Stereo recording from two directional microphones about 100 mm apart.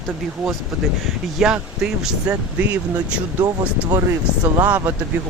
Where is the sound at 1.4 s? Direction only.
10° right (ahead or behind).